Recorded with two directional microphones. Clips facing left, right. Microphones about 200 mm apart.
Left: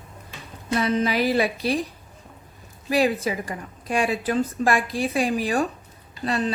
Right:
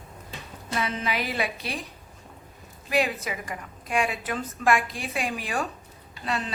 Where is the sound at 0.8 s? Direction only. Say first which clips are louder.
Left 7 dB; 40° left (ahead or behind).